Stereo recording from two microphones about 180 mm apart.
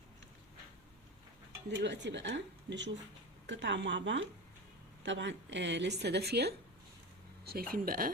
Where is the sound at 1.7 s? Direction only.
75° right (ahead or behind).